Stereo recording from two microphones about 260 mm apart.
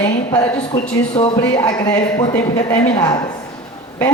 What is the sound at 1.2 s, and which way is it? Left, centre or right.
Speech, centre.